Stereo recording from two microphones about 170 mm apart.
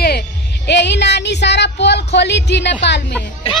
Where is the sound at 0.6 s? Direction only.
90° left.